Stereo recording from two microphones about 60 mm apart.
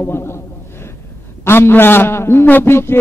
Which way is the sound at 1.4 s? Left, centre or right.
Left.